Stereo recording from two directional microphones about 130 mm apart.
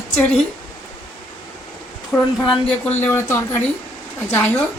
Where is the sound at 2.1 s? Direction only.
5° left (ahead or behind).